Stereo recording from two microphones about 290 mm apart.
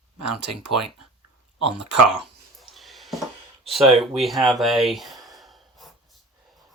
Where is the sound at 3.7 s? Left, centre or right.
Centre.